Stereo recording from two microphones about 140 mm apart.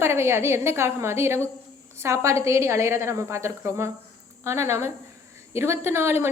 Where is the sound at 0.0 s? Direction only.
20° right (ahead or behind).